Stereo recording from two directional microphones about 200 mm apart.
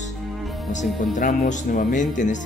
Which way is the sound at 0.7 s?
40° left (ahead or behind).